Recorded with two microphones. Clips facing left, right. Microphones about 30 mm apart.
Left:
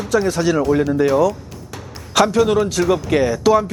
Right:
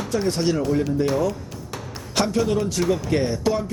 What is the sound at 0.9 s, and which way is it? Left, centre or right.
Speech, left.